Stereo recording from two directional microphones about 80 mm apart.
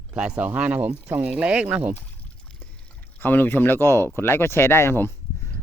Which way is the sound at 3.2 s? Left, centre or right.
Left.